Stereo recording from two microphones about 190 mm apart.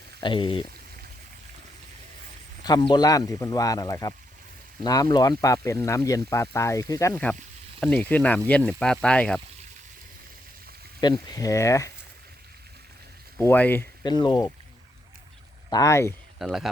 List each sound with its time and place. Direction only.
0.2 s speech: 25° left (ahead or behind)
2.6 s speech: 20° left (ahead or behind)
7.1 s speech: 5° left (ahead or behind)
11.0 s speech: 20° left (ahead or behind)
13.4 s speech: 10° left (ahead or behind)
14.0 s speech: 20° left (ahead or behind)
15.7 s speech: 15° left (ahead or behind)
16.4 s speech: centre (ahead or behind)